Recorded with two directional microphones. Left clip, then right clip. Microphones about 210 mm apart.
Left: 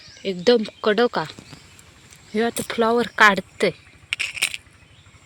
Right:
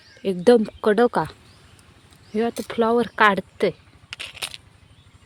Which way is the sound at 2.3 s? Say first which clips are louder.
Left 1 dB; centre (ahead or behind).